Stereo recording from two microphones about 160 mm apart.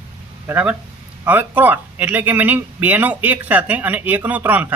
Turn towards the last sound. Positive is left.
turn(degrees=-10)  # may be behind; listen again after turning